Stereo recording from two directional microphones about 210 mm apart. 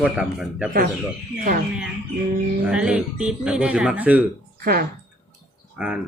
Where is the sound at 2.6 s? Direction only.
5° right (ahead or behind).